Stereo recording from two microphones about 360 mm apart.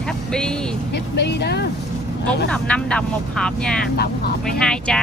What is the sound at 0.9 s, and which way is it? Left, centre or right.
Speech, left.